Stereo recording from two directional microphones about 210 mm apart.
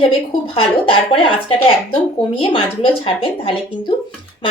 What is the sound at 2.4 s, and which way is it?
A woman's voice, 25° left (ahead or behind).